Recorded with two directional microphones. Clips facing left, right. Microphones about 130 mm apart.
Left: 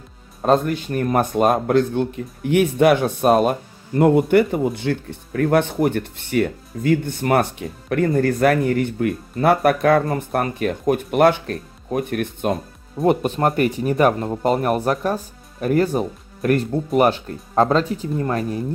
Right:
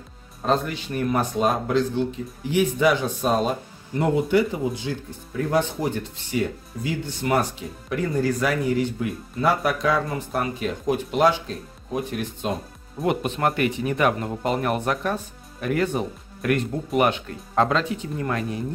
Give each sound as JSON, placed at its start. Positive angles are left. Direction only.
{"t": 0.5, "sound": "speech", "side_deg": 50}
{"t": 13.0, "sound": "speech", "side_deg": 40}